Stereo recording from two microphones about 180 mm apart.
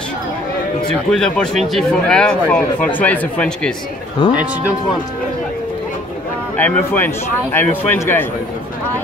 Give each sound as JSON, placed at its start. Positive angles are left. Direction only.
{"t": 1.1, "sound": "a man's voice", "side_deg": 5}
{"t": 4.2, "sound": "speech", "side_deg": 25}
{"t": 6.5, "sound": "speech", "side_deg": 10}